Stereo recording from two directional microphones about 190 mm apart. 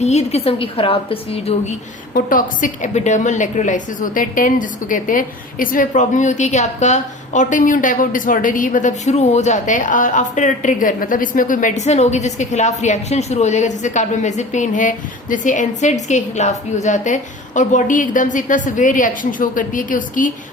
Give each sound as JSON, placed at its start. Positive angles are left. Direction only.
{"t": 0.0, "sound": "a woman's voice", "side_deg": 35}
{"t": 2.1, "sound": "a woman's voice", "side_deg": 45}